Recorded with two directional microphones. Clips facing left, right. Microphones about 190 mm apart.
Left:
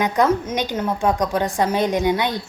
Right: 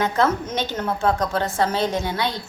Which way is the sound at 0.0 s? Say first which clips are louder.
Left 2 dB; 15° left (ahead or behind).